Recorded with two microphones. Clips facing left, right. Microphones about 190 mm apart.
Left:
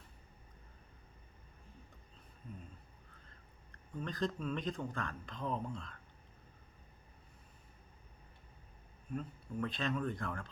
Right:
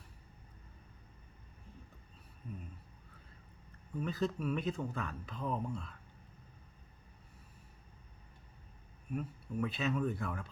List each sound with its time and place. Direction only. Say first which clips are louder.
3.7 s speech: right 4 dB; 5° right (ahead or behind)
9.1 s speech: right 2 dB; 5° right (ahead or behind)